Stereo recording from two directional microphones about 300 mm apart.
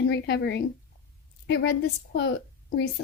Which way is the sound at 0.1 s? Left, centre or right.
Left.